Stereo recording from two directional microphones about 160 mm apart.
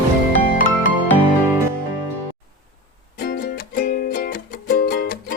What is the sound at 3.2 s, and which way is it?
Music, 70° left (ahead or behind).